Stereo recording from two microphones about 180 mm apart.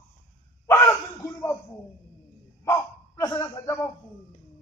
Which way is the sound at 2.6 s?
15° left (ahead or behind).